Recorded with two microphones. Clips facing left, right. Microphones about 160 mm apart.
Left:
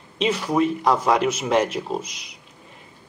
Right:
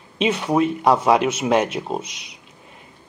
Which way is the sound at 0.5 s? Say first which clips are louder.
Right 3 dB; 10° right (ahead or behind).